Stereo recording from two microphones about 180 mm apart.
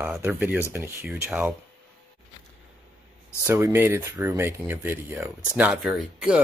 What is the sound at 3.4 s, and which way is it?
Speech, 15° right (ahead or behind).